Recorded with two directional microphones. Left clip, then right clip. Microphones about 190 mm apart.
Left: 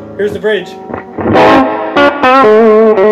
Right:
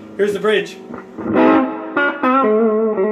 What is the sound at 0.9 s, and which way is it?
Music, 45° left (ahead or behind).